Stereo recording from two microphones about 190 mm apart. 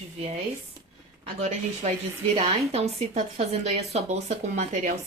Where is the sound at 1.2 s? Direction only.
35° right (ahead or behind).